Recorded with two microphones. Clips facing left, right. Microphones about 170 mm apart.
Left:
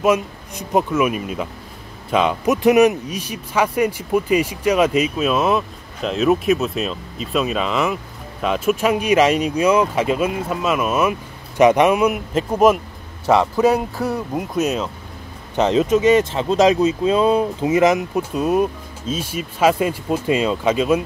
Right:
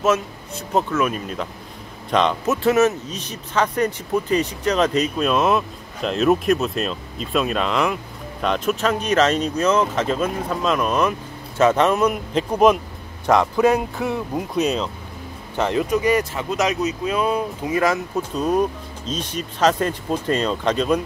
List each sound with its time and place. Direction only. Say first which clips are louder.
0.0 s speech: left 2 dB; 15° left (ahead or behind)
15.5 s speech: left 4 dB; 20° left (ahead or behind)